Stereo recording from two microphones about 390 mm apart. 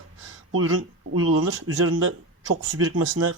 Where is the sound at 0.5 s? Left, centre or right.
Right.